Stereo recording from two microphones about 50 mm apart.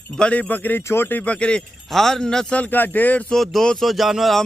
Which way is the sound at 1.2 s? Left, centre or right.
Left.